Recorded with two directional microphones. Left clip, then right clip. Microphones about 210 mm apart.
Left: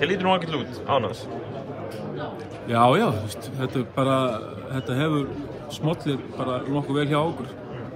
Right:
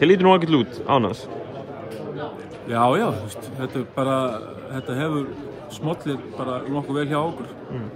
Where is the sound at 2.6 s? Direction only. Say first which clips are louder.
Even; 10° right (ahead or behind).